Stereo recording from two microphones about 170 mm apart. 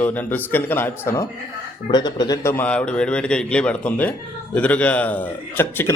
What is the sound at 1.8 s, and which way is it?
A man's voice, 25° left (ahead or behind).